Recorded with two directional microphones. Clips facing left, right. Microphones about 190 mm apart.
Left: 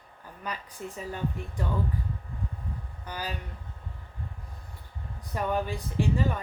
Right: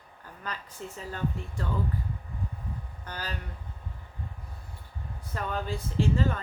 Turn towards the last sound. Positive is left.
turn(degrees=15)  # may be behind; listen again after turning